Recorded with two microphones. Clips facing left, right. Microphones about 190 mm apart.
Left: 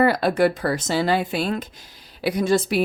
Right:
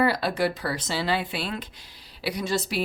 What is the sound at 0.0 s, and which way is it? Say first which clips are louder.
A woman's voice: left 6 dB; 50° left (ahead or behind).